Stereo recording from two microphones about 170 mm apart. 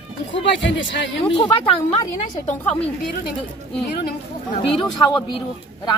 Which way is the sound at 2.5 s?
40° left (ahead or behind).